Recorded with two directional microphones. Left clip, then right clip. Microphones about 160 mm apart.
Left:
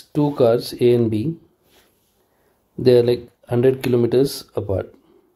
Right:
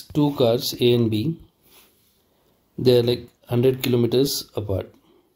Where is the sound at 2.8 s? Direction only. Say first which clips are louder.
Left 4 dB; 20° left (ahead or behind).